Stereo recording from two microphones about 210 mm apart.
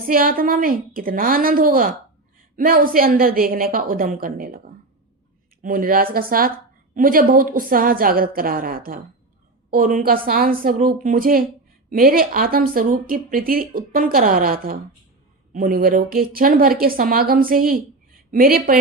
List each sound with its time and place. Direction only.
0.1 s speech: 45° right (ahead or behind)
5.6 s speech: 40° right (ahead or behind)